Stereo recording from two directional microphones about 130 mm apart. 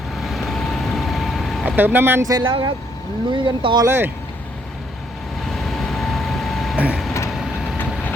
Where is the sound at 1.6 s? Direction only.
15° right (ahead or behind).